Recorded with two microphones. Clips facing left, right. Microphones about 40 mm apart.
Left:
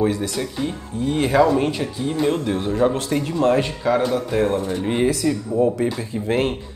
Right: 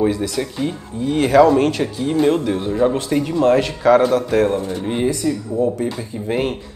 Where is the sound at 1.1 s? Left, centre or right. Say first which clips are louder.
Right 5 dB; right.